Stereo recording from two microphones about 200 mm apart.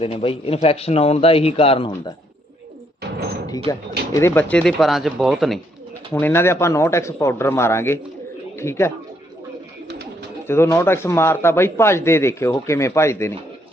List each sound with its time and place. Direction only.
0.0 s speech: 30° left (ahead or behind)
4.1 s speech: 10° left (ahead or behind)
6.1 s a man's voice: 10° left (ahead or behind)
10.4 s a man's voice: 15° left (ahead or behind)